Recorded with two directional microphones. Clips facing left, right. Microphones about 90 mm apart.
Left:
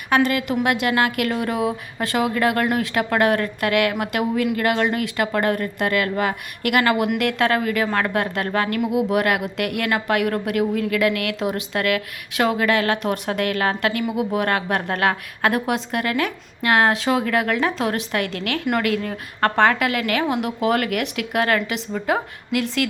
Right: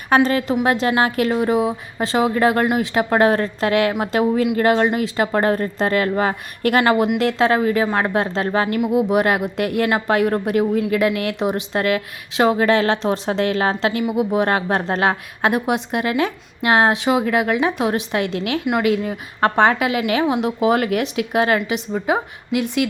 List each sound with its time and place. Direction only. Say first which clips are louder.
0.1 s a woman's voice: right 3 dB; 35° right (ahead or behind); by 22.9 s 20° right (ahead or behind)